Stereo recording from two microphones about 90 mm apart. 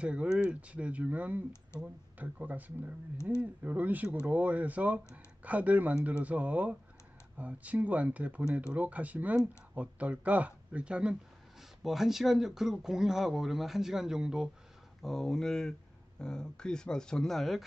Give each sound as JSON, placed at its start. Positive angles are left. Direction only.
{"t": 0.0, "sound": "speech", "side_deg": -10}